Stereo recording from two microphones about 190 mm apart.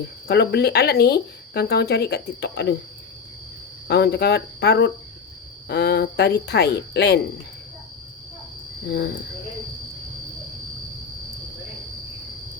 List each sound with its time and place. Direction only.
0.3 s speech: 60° left (ahead or behind)
3.8 s speech: 60° left (ahead or behind)